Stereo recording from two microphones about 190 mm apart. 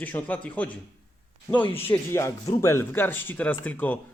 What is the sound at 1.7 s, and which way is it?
Speech, 10° left (ahead or behind).